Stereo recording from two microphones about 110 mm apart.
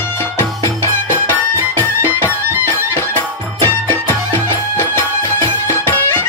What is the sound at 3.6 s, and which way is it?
Music, 20° left (ahead or behind).